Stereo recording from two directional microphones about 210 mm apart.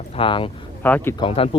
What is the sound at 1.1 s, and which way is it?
Speech, 25° left (ahead or behind).